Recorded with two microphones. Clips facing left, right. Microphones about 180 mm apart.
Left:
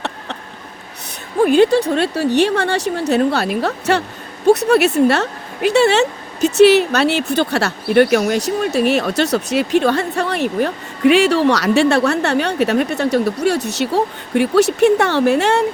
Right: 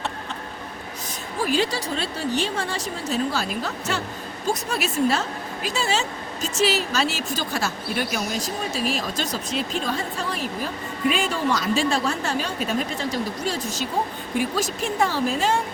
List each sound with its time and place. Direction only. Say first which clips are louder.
1.4 s speech: left 12 dB; 55° left (ahead or behind); by 15.6 s 75° left (ahead or behind)